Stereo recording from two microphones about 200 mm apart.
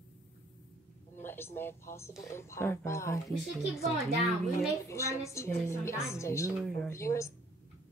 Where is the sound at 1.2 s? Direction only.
10° left (ahead or behind).